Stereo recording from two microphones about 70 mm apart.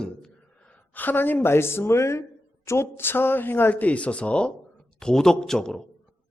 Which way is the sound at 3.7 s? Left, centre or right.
Centre.